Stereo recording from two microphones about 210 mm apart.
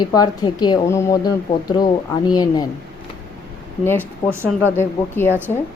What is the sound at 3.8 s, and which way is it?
A woman's voice, 10° left (ahead or behind).